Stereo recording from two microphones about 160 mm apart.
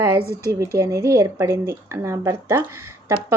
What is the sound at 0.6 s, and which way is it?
Speech, 20° right (ahead or behind).